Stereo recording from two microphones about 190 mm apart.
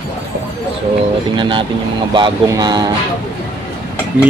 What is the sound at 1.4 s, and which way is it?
Speech, 25° right (ahead or behind).